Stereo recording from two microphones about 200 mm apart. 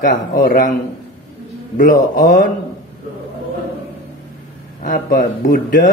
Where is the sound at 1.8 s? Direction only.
45° left (ahead or behind).